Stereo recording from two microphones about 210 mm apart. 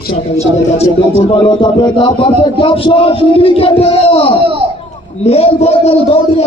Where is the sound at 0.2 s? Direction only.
30° left (ahead or behind).